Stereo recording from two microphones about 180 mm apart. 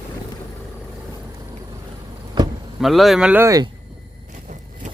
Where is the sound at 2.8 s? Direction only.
Centre (ahead or behind); by 3.7 s 20° right (ahead or behind).